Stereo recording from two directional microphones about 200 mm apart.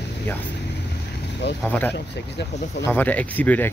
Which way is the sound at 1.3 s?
60° left (ahead or behind).